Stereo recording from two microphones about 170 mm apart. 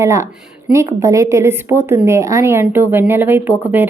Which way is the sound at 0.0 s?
15° right (ahead or behind).